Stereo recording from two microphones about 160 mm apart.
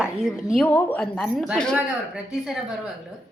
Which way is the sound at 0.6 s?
10° left (ahead or behind).